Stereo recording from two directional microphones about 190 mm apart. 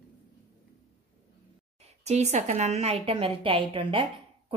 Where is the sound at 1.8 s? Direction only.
35° right (ahead or behind).